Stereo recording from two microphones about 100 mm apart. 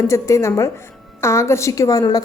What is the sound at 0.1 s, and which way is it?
A woman's voice, 30° left (ahead or behind).